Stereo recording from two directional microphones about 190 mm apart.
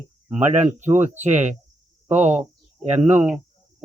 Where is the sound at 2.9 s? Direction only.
35° right (ahead or behind).